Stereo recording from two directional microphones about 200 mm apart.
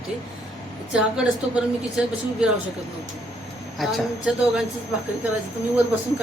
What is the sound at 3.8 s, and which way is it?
Speech, centre (ahead or behind).